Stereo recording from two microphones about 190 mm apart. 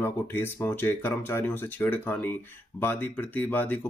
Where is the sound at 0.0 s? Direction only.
10° left (ahead or behind).